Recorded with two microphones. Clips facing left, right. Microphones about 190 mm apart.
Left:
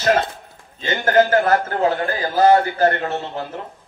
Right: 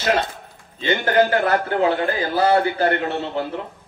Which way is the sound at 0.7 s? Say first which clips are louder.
Left 1 dB; 45° left (ahead or behind).